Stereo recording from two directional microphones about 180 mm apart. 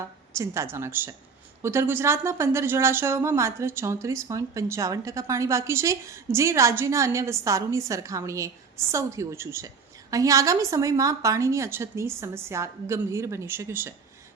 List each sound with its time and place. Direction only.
0.3 s speech: 15° right (ahead or behind)